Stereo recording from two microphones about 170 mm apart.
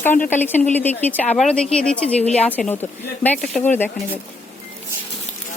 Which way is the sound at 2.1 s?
40° left (ahead or behind).